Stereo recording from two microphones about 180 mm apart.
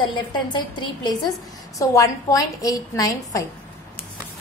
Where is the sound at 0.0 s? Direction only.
25° left (ahead or behind).